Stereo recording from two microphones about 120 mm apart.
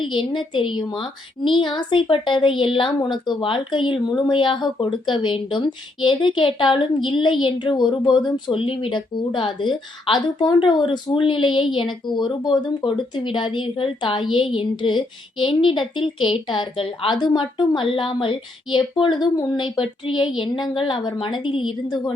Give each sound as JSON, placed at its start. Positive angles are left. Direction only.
{"t": 0.0, "sound": "a woman's voice", "side_deg": 40}